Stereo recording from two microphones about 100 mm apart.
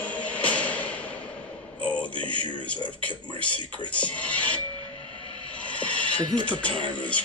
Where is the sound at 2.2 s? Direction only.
15° left (ahead or behind).